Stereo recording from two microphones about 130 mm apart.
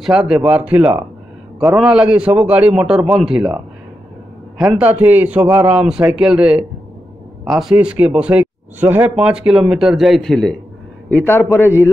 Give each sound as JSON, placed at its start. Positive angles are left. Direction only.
{"t": 0.0, "sound": "speech", "side_deg": -5}
{"t": 11.1, "sound": "a man's voice", "side_deg": 15}